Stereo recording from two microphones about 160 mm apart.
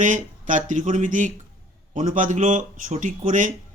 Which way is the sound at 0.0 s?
50° right (ahead or behind).